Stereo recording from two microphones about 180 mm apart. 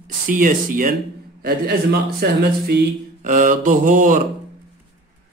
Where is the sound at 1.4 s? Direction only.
60° right (ahead or behind).